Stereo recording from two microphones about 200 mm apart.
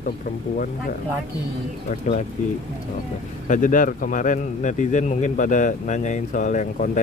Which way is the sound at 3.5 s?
40° left (ahead or behind).